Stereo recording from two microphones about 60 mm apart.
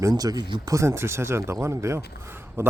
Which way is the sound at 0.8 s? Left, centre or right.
Right.